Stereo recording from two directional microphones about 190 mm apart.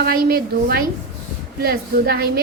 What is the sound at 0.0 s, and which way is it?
A woman's voice, 55° right (ahead or behind).